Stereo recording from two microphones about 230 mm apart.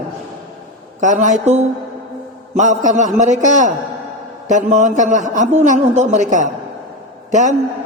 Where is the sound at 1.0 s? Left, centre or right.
Right.